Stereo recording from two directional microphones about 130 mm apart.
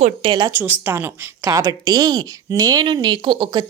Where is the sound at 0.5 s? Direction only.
15° right (ahead or behind); by 3.6 s 40° right (ahead or behind).